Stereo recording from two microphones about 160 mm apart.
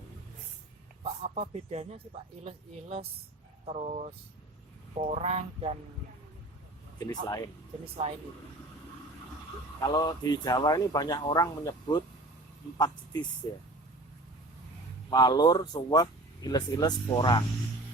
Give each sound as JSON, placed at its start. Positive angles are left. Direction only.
{"t": 1.0, "sound": "speech", "side_deg": -40}
{"t": 7.0, "sound": "speech", "side_deg": 25}
{"t": 9.8, "sound": "speech", "side_deg": 25}
{"t": 15.1, "sound": "speech", "side_deg": 25}